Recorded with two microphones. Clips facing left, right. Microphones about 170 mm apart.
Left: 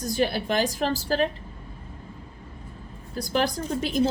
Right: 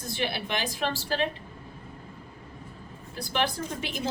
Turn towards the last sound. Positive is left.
turn(degrees=40)  # may be behind; listen again after turning